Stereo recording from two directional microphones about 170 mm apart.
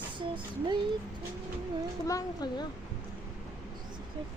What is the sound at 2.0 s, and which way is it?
Speech, 20° left (ahead or behind).